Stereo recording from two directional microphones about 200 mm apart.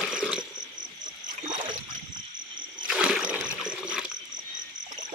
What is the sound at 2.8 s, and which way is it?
Splash, 5° right (ahead or behind).